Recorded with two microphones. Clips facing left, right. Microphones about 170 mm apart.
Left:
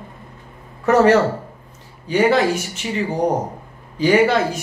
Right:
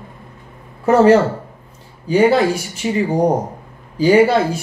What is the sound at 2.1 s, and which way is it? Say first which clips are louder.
Speech: right 3 dB; 30° right (ahead or behind).